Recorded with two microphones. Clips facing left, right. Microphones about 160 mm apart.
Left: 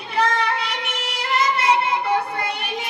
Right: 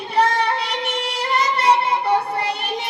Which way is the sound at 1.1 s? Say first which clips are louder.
Left 1 dB; 30° right (ahead or behind).